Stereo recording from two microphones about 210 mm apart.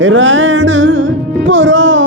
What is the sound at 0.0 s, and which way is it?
Music, 65° right (ahead or behind).